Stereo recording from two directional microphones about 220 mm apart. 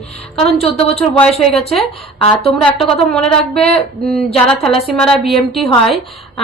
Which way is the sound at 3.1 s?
5° left (ahead or behind).